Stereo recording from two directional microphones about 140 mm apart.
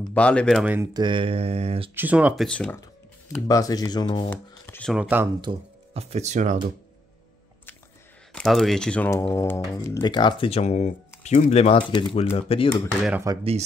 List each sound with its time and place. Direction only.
0.1 s speech: 10° left (ahead or behind)
0.9 s speech: 35° right (ahead or behind)
2.0 s speech: 10° right (ahead or behind)
2.3 s speech: 5° left (ahead or behind)
3.4 s speech: 25° left (ahead or behind)
4.3 s shuffling cards: 10° left (ahead or behind)
4.9 s speech: 10° right (ahead or behind)
5.9 s speech: 50° right (ahead or behind)
8.3 s speech: 5° left (ahead or behind)
9.3 s speech: 20° left (ahead or behind)
10.0 s speech: 35° left (ahead or behind)
13.3 s speech: 25° right (ahead or behind)